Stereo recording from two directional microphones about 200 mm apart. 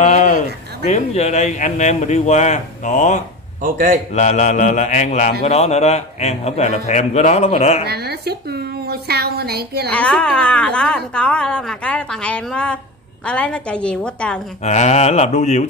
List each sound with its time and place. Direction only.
0.0 s a sound: 35° left (ahead or behind)
0.8 s a man's voice: 35° left (ahead or behind)
3.6 s a man's voice: 45° right (ahead or behind)
4.1 s a man's voice: 35° left (ahead or behind)
7.8 s a woman's voice: 55° right (ahead or behind)
9.8 s a woman's voice: 5° left (ahead or behind)
14.6 s a man's voice: 35° left (ahead or behind)